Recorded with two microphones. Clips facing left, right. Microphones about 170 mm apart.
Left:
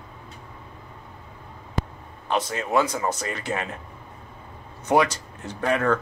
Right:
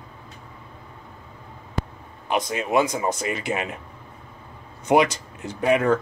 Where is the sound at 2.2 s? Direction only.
15° right (ahead or behind).